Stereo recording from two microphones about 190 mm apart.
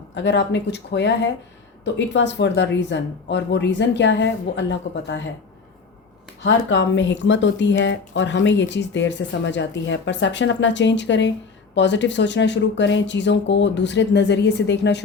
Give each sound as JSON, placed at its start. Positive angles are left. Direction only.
{"t": 0.1, "sound": "speech", "side_deg": 65}
{"t": 4.9, "sound": "speech", "side_deg": 85}
{"t": 6.4, "sound": "speech", "side_deg": 75}